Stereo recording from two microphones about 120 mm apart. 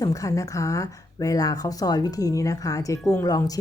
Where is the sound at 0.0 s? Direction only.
30° left (ahead or behind).